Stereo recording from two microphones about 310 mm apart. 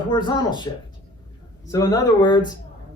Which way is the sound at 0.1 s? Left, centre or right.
Centre.